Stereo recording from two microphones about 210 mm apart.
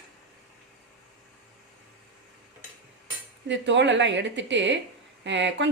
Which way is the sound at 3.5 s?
55° right (ahead or behind).